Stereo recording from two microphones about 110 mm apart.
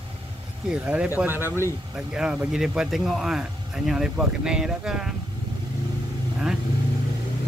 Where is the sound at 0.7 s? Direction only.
10° right (ahead or behind).